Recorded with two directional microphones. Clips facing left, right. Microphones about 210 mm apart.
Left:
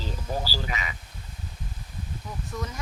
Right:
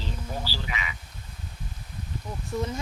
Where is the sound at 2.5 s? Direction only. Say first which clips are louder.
Right 6 dB; 30° right (ahead or behind).